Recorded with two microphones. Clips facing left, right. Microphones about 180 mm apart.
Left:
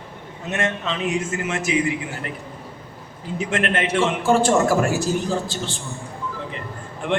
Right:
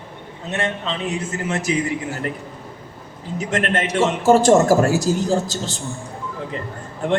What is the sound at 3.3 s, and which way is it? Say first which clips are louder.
A man's voice: right 1 dB; 40° right (ahead or behind).